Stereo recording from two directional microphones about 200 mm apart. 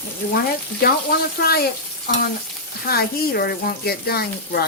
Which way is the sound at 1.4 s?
50° left (ahead or behind).